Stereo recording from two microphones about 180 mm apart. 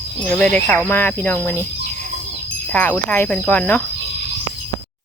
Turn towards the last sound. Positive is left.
turn(degrees=10)  # may be behind; listen again after turning